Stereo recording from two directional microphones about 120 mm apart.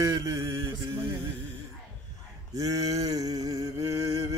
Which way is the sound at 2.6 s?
30° right (ahead or behind).